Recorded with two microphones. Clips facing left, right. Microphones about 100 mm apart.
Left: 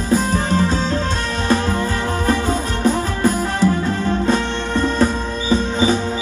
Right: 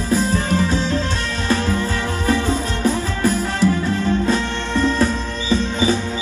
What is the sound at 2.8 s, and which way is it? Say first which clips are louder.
Music: left 2 dB; 20° left (ahead or behind).